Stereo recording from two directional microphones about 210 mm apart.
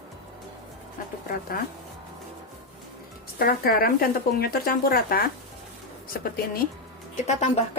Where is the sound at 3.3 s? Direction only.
45° left (ahead or behind).